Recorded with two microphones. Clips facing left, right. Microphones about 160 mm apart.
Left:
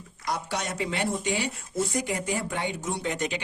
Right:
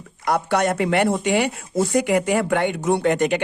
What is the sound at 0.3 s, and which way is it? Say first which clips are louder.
Speech: right 11 dB; 60° right (ahead or behind).